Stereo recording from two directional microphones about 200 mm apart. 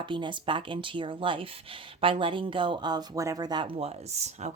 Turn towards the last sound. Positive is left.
turn(degrees=-35)  # may be behind; listen again after turning